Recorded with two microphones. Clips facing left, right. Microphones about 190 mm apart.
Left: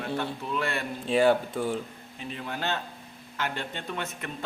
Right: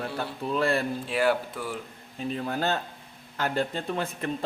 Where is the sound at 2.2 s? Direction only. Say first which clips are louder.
Right 6 dB; 40° right (ahead or behind).